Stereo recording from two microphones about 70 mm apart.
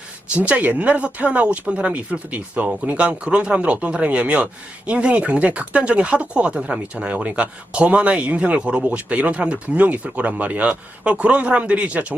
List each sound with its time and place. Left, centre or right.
0.3 s speech: right